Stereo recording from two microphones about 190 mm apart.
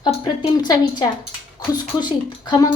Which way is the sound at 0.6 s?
20° left (ahead or behind).